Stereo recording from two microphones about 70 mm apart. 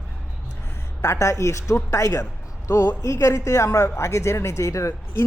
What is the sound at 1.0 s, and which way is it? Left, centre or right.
Speech, left.